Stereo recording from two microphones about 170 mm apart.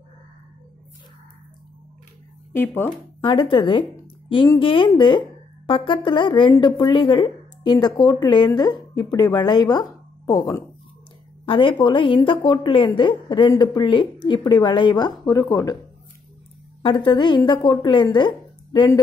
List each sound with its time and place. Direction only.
2.5 s speech: 15° left (ahead or behind)
3.3 s speech: 30° left (ahead or behind)
11.4 s speech: 30° left (ahead or behind)
16.8 s speech: 30° left (ahead or behind)